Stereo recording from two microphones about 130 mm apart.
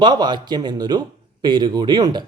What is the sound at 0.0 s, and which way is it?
Speech, 35° right (ahead or behind).